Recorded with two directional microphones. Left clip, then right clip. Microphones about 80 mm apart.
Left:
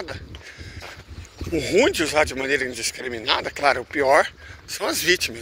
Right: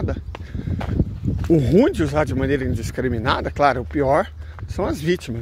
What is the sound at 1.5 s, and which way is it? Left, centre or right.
Speech, right.